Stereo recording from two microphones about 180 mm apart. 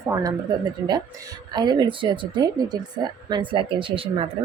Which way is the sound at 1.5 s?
25° right (ahead or behind).